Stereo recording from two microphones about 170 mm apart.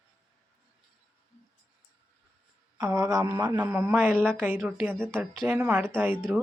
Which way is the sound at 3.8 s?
10° right (ahead or behind).